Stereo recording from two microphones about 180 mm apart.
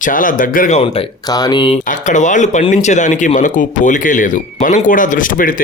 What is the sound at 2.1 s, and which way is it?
Speech, 45° left (ahead or behind).